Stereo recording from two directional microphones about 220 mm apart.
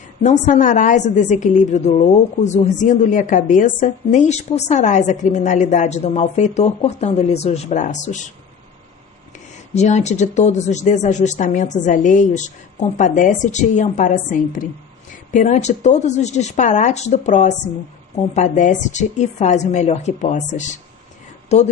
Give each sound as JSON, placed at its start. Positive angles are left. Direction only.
{"t": 0.2, "sound": "a woman's voice", "side_deg": 35}
{"t": 9.7, "sound": "a woman's voice", "side_deg": 30}